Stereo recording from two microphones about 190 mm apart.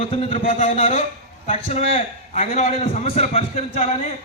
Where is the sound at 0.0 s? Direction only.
30° left (ahead or behind).